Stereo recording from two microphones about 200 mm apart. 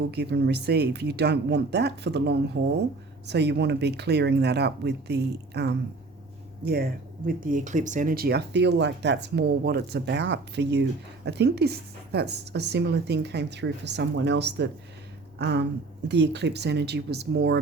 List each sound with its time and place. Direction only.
0.1 s speech: 55° right (ahead or behind)
7.3 s speech: 40° right (ahead or behind); by 17.6 s 55° right (ahead or behind)